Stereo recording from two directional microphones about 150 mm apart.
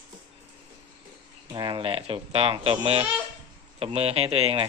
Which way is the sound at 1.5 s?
30° right (ahead or behind).